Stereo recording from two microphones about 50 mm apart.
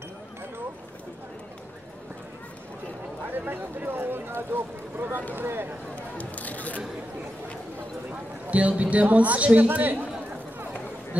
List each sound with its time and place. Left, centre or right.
3.3 s speech: right
5.9 s a sound: left
8.5 s a man's voice: right
9.7 s a man's voice: right